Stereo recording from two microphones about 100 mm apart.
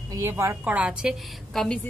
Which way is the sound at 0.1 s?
25° right (ahead or behind).